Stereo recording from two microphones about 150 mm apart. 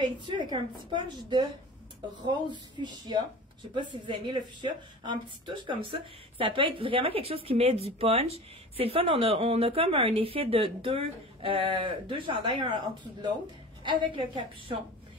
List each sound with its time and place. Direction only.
0.0 s a woman's voice: 30° right (ahead or behind)